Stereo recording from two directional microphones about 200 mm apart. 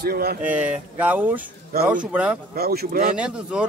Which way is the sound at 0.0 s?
50° right (ahead or behind).